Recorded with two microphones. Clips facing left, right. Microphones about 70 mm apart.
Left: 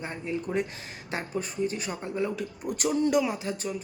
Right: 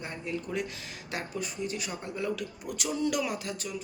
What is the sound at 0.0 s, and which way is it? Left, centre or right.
Speech, left.